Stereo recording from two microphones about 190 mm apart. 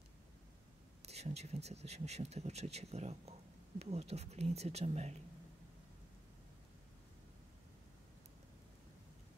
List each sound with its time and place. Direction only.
1.0 s speech: 35° right (ahead or behind)